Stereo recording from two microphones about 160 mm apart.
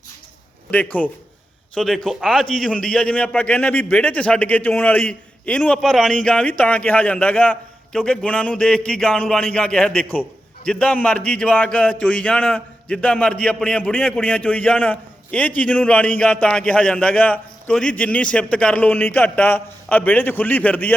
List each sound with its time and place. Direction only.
0.7 s a man's voice: 10° left (ahead or behind)